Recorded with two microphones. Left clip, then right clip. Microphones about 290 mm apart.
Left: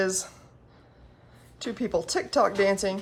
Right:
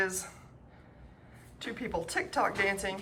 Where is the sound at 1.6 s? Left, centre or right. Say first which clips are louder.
Left 7 dB; centre.